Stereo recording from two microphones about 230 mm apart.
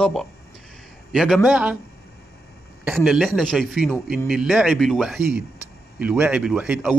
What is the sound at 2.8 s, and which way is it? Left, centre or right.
Speech, centre.